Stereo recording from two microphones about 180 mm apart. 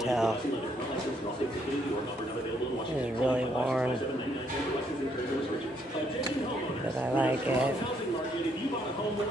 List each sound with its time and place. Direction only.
0.0 s a man's voice: centre (ahead or behind)
3.3 s speech: 5° right (ahead or behind)
7.2 s speech: 10° right (ahead or behind)